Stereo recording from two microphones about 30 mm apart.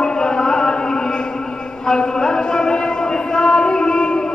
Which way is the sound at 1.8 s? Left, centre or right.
Left.